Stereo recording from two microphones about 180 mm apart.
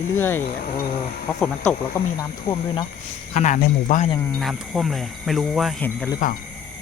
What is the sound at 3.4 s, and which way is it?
Speech, 45° left (ahead or behind).